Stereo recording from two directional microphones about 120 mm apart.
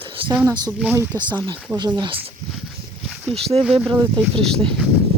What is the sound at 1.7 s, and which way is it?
Speech, 35° right (ahead or behind).